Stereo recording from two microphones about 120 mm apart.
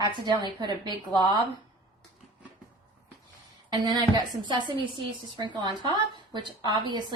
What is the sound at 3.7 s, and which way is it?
A woman's voice, 35° right (ahead or behind).